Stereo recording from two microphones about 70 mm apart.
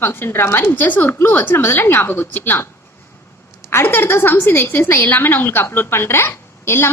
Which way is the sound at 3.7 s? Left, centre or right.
Left.